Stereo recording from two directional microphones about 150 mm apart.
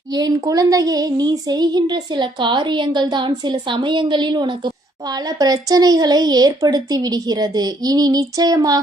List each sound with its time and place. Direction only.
0.1 s child singing: 25° right (ahead or behind)